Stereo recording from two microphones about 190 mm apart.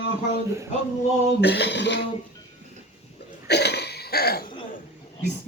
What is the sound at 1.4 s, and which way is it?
Speech, 60° left (ahead or behind).